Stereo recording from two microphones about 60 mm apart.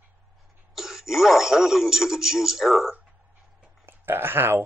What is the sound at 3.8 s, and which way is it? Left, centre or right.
Speech, right.